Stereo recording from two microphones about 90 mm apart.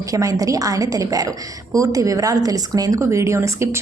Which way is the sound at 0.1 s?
40° right (ahead or behind).